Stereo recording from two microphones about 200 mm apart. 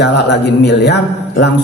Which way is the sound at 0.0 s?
60° left (ahead or behind).